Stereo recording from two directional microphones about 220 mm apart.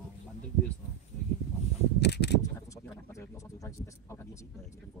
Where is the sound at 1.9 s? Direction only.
50° left (ahead or behind).